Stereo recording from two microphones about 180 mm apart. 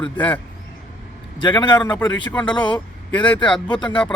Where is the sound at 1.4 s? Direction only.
25° left (ahead or behind).